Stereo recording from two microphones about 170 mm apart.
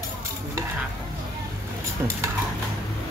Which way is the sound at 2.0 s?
15° right (ahead or behind).